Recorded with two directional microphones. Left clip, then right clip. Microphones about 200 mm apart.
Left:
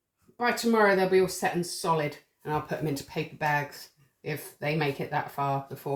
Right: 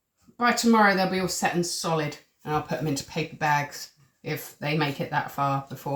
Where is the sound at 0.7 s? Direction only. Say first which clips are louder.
Even; 30° left (ahead or behind).